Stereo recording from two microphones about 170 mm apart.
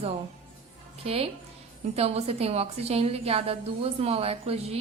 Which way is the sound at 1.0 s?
35° right (ahead or behind).